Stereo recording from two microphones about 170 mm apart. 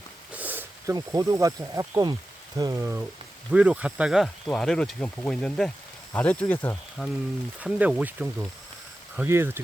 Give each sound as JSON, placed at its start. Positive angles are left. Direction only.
{"t": 0.3, "sound": "a sound", "side_deg": -10}
{"t": 0.9, "sound": "speech", "side_deg": -20}
{"t": 7.0, "sound": "speech", "side_deg": 0}